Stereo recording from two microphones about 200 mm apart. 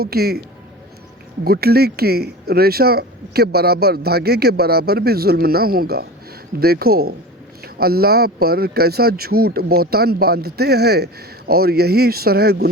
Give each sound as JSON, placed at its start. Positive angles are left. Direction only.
{"t": 0.0, "sound": "speech", "side_deg": -50}
{"t": 1.5, "sound": "speech", "side_deg": -50}